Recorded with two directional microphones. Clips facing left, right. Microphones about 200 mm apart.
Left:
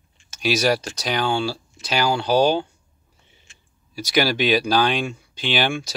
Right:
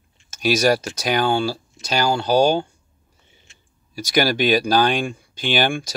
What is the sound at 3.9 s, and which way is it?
Speech, 50° right (ahead or behind).